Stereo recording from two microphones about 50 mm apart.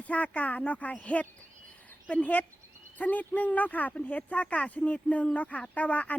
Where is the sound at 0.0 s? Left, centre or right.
Left.